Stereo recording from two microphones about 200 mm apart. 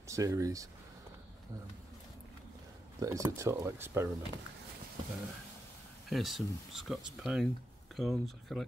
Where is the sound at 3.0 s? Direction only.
15° right (ahead or behind).